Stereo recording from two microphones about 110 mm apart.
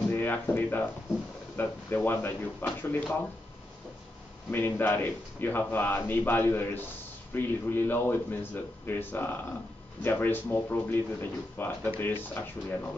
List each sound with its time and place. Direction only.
0.1 s speech: 20° left (ahead or behind)
4.5 s a man's voice: 20° left (ahead or behind)